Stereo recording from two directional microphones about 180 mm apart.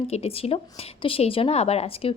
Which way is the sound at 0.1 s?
35° left (ahead or behind).